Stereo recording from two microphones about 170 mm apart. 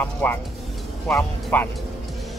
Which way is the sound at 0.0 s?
10° left (ahead or behind).